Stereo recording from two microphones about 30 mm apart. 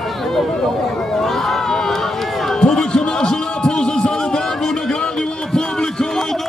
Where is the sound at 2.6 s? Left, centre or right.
Left.